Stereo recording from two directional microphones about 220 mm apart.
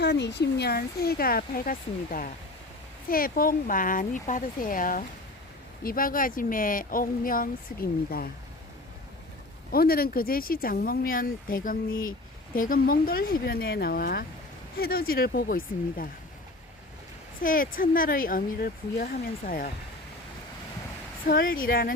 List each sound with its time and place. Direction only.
0.0 s speech: 50° left (ahead or behind)
9.7 s speech: 45° left (ahead or behind)
17.4 s speech: 40° left (ahead or behind)
21.2 s speech: 40° left (ahead or behind)